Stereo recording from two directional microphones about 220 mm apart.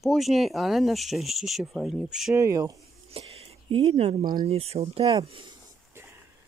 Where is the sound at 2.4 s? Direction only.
15° right (ahead or behind).